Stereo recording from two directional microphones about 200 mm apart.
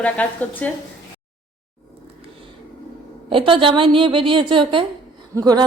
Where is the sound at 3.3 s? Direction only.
25° right (ahead or behind).